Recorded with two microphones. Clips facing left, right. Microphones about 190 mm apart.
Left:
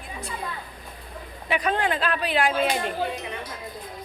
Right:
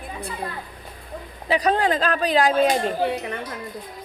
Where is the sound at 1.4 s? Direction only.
35° right (ahead or behind).